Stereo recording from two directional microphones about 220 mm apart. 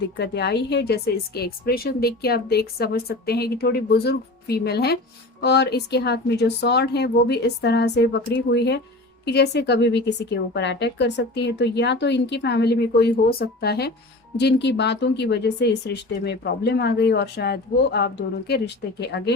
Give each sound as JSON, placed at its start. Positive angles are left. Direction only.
{"t": 0.2, "sound": "speech", "side_deg": 50}